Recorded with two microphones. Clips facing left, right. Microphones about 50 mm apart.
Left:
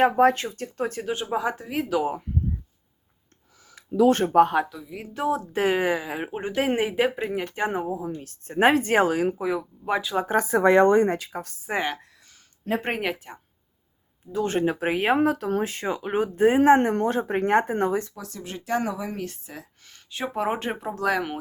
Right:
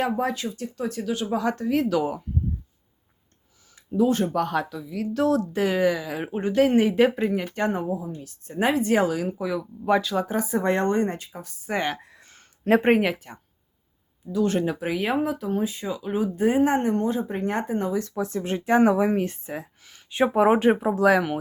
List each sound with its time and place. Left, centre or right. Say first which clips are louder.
0.0 s speech: left 6 dB; left; by 2.0 s centre
4.3 s speech: left 6 dB; left
5.5 s speech: even; left
6.2 s speech: right 6 dB; centre
8.0 s speech: left 3 dB; left
9.4 s speech: left 1 dB; left
9.8 s speech: right 6 dB; centre
10.2 s speech: left 4 dB; left
11.7 s speech: right 1 dB; centre
12.1 s a sound: right 5 dB; right
12.9 s speech: right 7 dB; centre
14.3 s speech: right 1 dB; left
18.1 s speech: right 10 dB; right; by 21.3 s centre